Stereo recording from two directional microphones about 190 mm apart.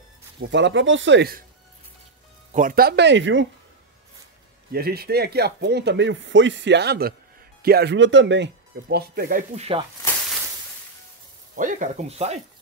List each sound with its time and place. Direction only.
0.4 s speech: 70° right (ahead or behind)
2.5 s speech: 45° right (ahead or behind); by 3.4 s 75° right (ahead or behind)
4.7 s speech: 55° right (ahead or behind); by 8.5 s 70° right (ahead or behind)
8.8 s speech: 55° right (ahead or behind)
11.5 s speech: 45° right (ahead or behind)